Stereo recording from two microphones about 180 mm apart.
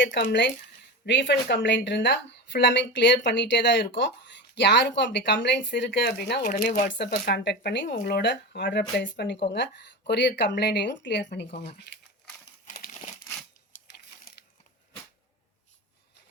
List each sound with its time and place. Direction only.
0.0 s speech: 75° left (ahead or behind)
6.4 s speech: 45° left (ahead or behind)
6.9 s speech: 70° left (ahead or behind); by 9.4 s 85° left
9.5 s speech: 70° left (ahead or behind)
12.6 s crumpling: 50° left (ahead or behind)